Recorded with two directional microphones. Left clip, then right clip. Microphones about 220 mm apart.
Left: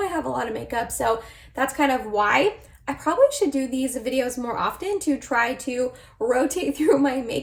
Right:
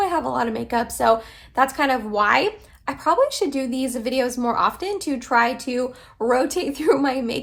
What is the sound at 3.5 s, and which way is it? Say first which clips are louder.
A woman's voice: right 1 dB; 15° right (ahead or behind).